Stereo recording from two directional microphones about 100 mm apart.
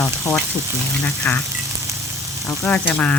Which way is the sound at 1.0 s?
15° left (ahead or behind).